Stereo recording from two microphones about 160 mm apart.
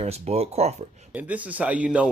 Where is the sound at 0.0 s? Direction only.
40° right (ahead or behind).